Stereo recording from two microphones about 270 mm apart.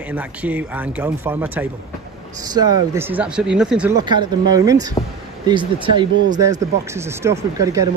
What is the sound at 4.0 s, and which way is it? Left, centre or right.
Speech, centre.